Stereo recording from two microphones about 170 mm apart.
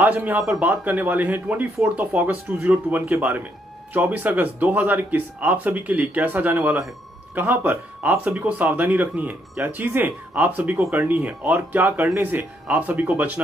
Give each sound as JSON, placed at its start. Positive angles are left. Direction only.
{"t": 0.0, "sound": "speech", "side_deg": -10}